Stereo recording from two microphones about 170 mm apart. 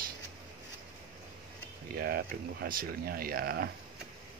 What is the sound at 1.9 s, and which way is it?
Speech, 60° right (ahead or behind).